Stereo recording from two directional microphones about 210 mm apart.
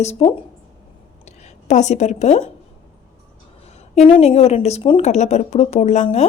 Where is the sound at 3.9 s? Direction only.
30° left (ahead or behind).